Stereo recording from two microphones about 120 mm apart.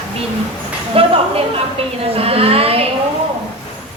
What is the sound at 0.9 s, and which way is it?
A woman's voice, 50° right (ahead or behind).